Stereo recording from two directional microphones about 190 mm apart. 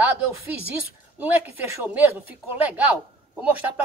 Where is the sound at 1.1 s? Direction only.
10° right (ahead or behind).